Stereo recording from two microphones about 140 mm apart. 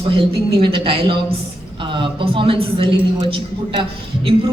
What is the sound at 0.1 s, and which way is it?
A woman's voice, 40° right (ahead or behind).